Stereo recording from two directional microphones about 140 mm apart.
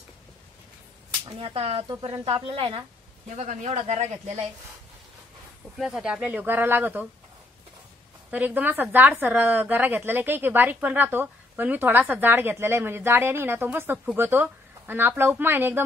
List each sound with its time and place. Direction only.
1.2 s speech: 45° right (ahead or behind)
1.9 s a woman's voice: 30° right (ahead or behind)
3.3 s speech: 55° right (ahead or behind)
5.8 s a woman's voice: 5° right (ahead or behind)
8.3 s a woman's voice: 10° right (ahead or behind)